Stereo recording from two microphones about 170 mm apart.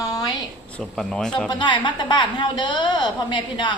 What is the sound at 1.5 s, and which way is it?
A woman's voice, 25° left (ahead or behind).